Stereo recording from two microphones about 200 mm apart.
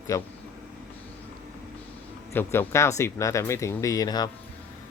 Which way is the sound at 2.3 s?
10° left (ahead or behind).